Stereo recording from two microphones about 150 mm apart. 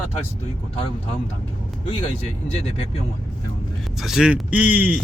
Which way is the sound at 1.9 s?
40° left (ahead or behind).